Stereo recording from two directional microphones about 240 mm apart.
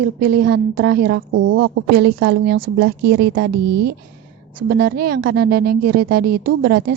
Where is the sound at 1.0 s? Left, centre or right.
Right.